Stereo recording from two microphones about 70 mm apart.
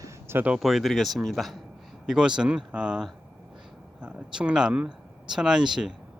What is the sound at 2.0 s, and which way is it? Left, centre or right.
Speech, centre.